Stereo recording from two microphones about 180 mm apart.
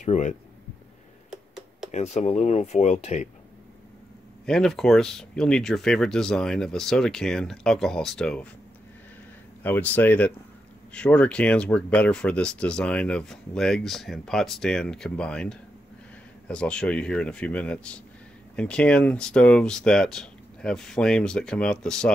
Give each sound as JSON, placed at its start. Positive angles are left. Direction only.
{"t": 0.0, "sound": "speech", "side_deg": 40}
{"t": 1.3, "sound": "computer keyboard", "side_deg": 0}
{"t": 1.9, "sound": "speech", "side_deg": 40}
{"t": 4.5, "sound": "speech", "side_deg": 5}
{"t": 9.6, "sound": "speech", "side_deg": 10}